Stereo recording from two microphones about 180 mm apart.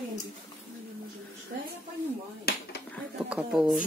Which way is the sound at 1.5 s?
60° right (ahead or behind).